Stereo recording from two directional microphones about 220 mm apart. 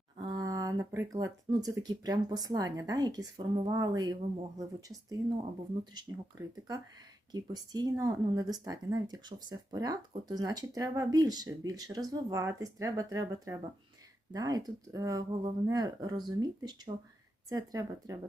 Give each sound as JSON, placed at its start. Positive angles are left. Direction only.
{"t": 0.2, "sound": "speech", "side_deg": -20}
{"t": 7.3, "sound": "speech", "side_deg": -20}